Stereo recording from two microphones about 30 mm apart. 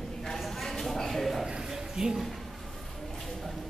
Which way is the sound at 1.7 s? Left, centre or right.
Centre.